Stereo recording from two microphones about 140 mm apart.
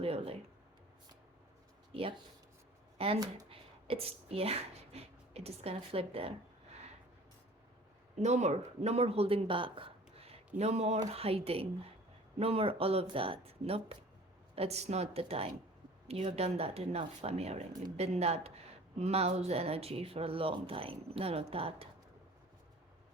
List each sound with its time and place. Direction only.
0.0 s speech: 45° right (ahead or behind)
1.9 s speech: 45° right (ahead or behind)
8.2 s speech: 55° right (ahead or behind)